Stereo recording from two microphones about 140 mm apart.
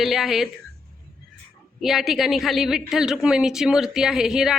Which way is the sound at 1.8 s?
Centre (ahead or behind).